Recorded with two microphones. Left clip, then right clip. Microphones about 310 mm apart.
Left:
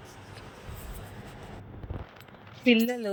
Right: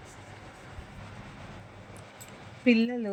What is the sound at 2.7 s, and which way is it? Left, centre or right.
Speech, centre.